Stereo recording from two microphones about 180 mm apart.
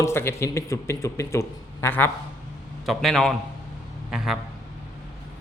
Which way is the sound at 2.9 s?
Centre (ahead or behind).